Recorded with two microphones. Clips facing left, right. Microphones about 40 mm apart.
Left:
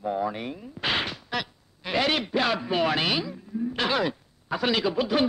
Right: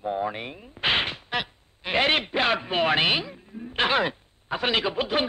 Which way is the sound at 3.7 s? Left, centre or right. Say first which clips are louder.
Right 4 dB; right.